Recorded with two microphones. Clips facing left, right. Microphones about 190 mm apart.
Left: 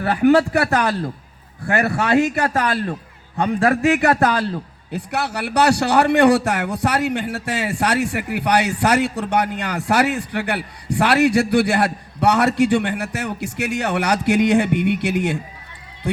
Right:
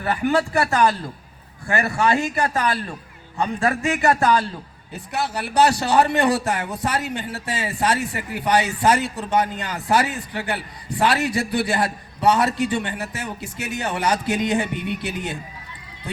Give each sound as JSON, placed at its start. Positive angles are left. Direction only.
{"t": 0.0, "sound": "a man's voice", "side_deg": 70}